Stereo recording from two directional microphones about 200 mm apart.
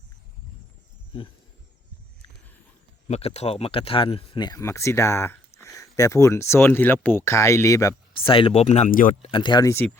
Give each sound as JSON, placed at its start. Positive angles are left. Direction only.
{"t": 3.1, "sound": "speech", "side_deg": 30}
{"t": 8.3, "sound": "speech", "side_deg": 25}
{"t": 9.3, "sound": "speech", "side_deg": 25}